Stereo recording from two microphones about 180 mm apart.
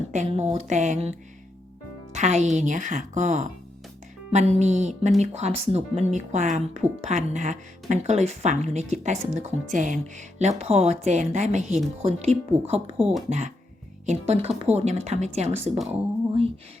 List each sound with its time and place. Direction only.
0.1 s speech: 40° right (ahead or behind)
2.1 s speech: 40° right (ahead or behind)